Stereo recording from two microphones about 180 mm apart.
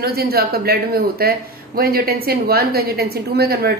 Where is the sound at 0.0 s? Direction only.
60° right (ahead or behind).